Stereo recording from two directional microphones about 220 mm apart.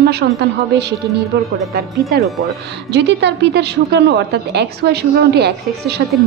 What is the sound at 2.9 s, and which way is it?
A woman's voice, 50° right (ahead or behind).